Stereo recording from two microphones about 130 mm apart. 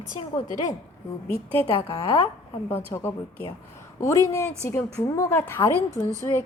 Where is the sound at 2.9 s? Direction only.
20° left (ahead or behind).